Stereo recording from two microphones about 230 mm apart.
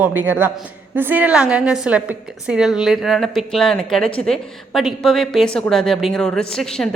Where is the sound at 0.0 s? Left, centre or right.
Centre.